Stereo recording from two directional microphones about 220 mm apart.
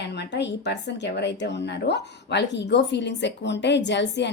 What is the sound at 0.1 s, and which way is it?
Speech, 50° left (ahead or behind).